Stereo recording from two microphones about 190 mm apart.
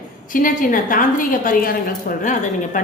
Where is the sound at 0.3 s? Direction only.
45° left (ahead or behind).